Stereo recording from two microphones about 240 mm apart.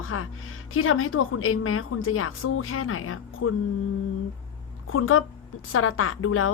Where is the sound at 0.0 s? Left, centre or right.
Left.